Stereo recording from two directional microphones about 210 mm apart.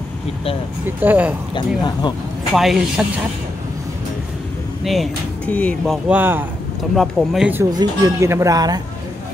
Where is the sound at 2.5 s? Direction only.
Centre (ahead or behind).